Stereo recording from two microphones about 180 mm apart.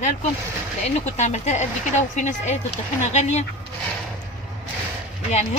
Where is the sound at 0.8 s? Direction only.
40° left (ahead or behind).